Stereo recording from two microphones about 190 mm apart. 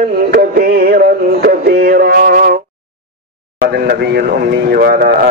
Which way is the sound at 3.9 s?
55° right (ahead or behind).